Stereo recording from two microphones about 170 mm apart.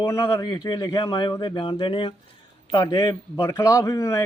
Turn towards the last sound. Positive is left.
turn(degrees=20)  # may be behind; listen again after turning